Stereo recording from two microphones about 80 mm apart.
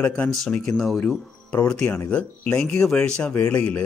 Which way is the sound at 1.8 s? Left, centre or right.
Centre.